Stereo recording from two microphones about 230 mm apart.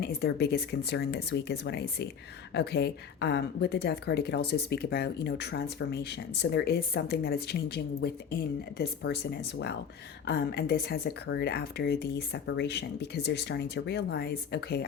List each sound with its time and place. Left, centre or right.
0.0 s a woman's voice: left